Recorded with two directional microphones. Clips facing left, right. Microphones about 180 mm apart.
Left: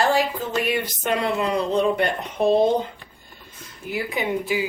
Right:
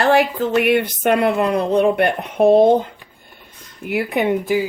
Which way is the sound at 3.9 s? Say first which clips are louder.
Right 7 dB; 60° right (ahead or behind).